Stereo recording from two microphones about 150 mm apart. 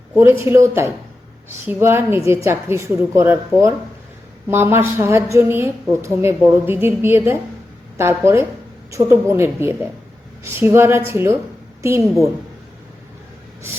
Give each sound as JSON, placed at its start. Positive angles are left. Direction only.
{"t": 0.1, "sound": "a woman's voice", "side_deg": -15}